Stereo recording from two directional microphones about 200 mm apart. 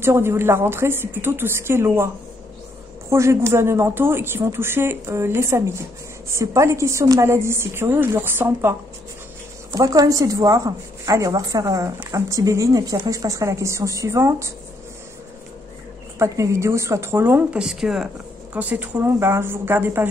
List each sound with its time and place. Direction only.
0.0 s a woman's voice: 10° right (ahead or behind)
3.1 s a woman's voice: 15° right (ahead or behind)
16.2 s a woman's voice: 15° right (ahead or behind)